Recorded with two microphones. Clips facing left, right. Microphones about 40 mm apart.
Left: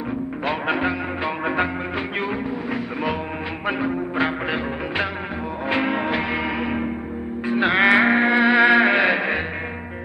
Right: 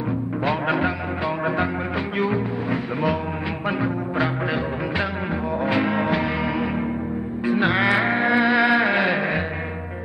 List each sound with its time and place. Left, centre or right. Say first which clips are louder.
0.4 s music: right 1 dB; centre
1.2 s music: even; left
2.7 s a sound: right 3 dB; centre
3.6 s music: left 1 dB; centre
7.7 s music: left 4 dB; left